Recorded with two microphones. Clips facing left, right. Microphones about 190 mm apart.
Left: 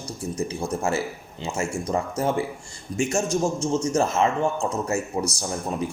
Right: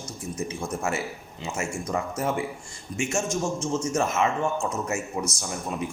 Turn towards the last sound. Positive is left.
turn(degrees=35)  # may be behind; listen again after turning